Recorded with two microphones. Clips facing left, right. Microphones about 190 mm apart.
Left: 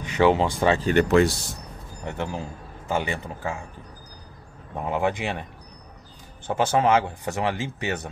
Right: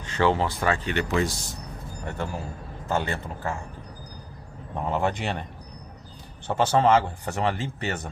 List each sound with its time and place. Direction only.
0.0 s speech: 15° left (ahead or behind)
0.7 s speech: 40° left (ahead or behind)
2.0 s speech: 20° left (ahead or behind)
4.7 s speech: 10° left (ahead or behind)